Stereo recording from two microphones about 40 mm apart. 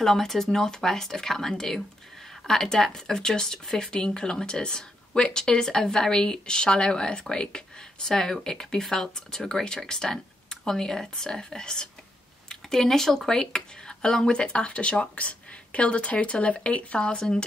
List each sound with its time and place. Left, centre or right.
0.0 s speech: centre